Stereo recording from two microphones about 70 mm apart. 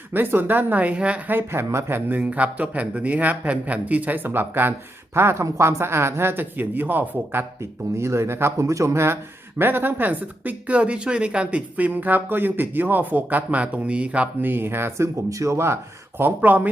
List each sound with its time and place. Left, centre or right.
0.1 s speech: right
1.3 s speech: right
7.9 s speech: right
9.6 s speech: right